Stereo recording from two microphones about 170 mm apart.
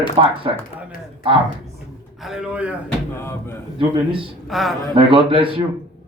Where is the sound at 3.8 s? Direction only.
30° right (ahead or behind).